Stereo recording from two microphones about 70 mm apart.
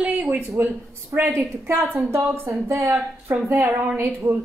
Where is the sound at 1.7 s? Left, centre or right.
Right.